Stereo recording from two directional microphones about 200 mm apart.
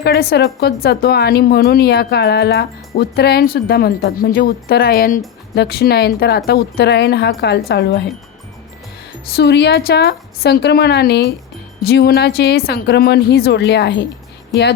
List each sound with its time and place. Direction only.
0.0 s a woman's voice: 50° left (ahead or behind)
9.3 s a woman's voice: 55° left (ahead or behind)